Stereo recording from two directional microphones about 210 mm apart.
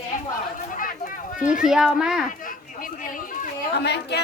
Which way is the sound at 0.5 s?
40° left (ahead or behind).